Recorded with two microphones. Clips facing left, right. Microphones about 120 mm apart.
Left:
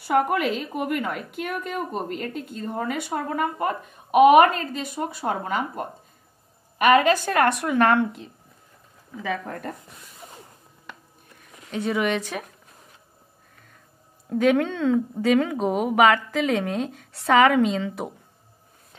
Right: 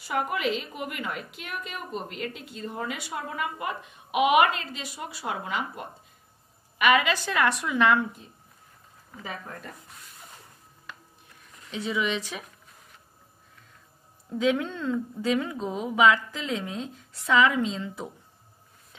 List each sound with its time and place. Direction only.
0.0 s a woman's voice: 50° left (ahead or behind)
8.0 s a woman's voice: 75° left (ahead or behind)
11.7 s a woman's voice: 55° left (ahead or behind)
14.3 s a woman's voice: 65° left (ahead or behind)